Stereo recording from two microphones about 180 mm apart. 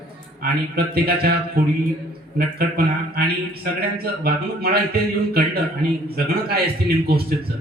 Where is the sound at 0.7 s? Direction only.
55° right (ahead or behind).